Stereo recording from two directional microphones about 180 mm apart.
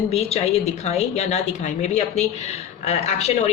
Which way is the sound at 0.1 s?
35° left (ahead or behind).